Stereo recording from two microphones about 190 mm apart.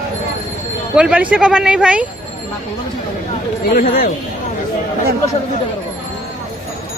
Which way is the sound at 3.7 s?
45° left (ahead or behind).